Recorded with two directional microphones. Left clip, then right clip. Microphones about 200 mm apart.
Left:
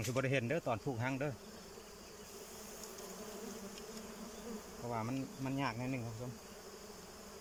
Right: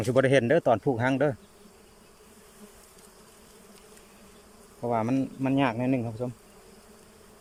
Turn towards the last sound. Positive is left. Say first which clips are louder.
# right 14 dB
turn(degrees=-50)  # may be behind; listen again after turning